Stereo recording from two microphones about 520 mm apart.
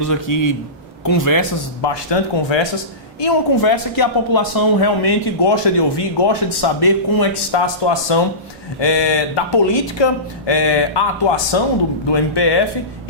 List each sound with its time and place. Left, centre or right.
0.0 s a man's voice: left